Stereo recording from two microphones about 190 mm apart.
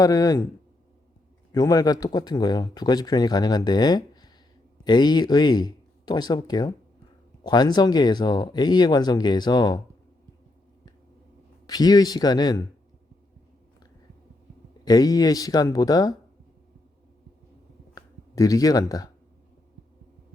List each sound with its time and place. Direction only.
0.0 s speech: 20° left (ahead or behind)
1.5 s speech: 20° left (ahead or behind)
11.6 s speech: 20° left (ahead or behind)
14.8 s speech: 20° left (ahead or behind)
17.9 s a sound: 20° left (ahead or behind)